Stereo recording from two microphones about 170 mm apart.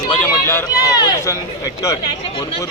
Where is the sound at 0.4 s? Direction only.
20° left (ahead or behind).